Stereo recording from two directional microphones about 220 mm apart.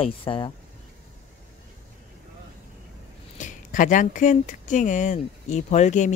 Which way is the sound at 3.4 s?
35° left (ahead or behind).